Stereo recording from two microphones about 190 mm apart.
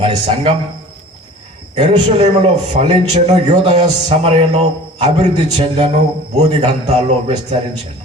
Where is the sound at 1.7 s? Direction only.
35° right (ahead or behind).